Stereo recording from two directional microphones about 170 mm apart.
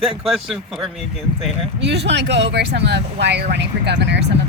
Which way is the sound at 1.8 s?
90° right.